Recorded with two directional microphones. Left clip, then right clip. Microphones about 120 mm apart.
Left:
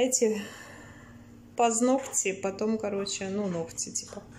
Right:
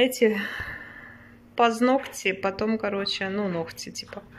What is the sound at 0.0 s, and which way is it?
Speech, 10° left (ahead or behind).